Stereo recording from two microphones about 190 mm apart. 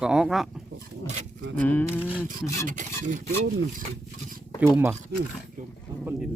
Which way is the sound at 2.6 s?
40° right (ahead or behind).